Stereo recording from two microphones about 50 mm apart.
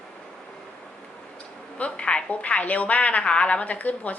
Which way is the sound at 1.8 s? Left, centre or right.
Left.